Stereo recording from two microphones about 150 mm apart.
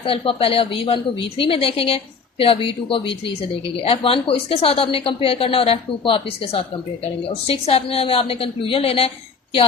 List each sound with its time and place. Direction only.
0.0 s a woman's voice: 40° left (ahead or behind)